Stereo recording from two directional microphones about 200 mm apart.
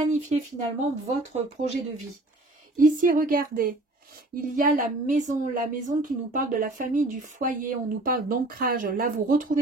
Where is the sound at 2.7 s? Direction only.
45° right (ahead or behind).